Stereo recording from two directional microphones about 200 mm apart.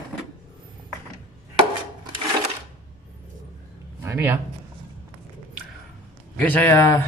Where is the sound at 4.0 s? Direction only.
15° right (ahead or behind).